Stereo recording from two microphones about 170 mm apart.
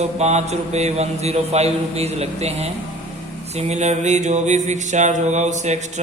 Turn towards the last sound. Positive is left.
turn(degrees=-45)  # may be behind; listen again after turning